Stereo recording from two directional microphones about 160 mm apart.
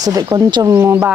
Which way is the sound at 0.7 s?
15° right (ahead or behind).